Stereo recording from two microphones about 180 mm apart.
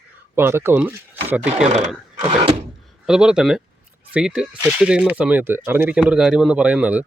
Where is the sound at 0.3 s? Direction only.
15° right (ahead or behind).